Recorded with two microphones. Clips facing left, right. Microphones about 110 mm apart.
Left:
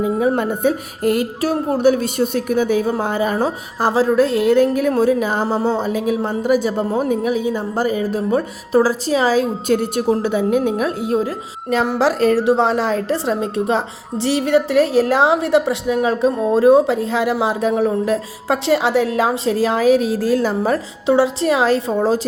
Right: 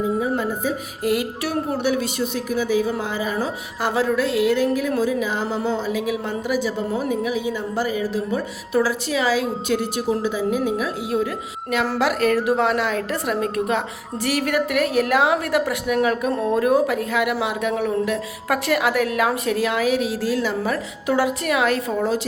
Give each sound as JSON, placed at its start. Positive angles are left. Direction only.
{"t": 0.0, "sound": "speech", "side_deg": 65}
{"t": 10.2, "sound": "a woman's voice", "side_deg": 60}
{"t": 11.1, "sound": "a woman's voice", "side_deg": 35}
{"t": 21.1, "sound": "a woman's voice", "side_deg": 25}